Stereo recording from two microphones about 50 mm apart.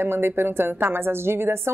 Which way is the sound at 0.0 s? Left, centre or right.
Right.